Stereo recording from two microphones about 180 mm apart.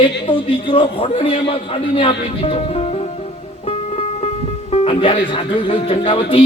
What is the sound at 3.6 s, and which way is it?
Music, 35° left (ahead or behind).